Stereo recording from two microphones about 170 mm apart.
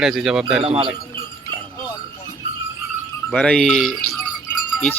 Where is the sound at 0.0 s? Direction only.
Centre (ahead or behind).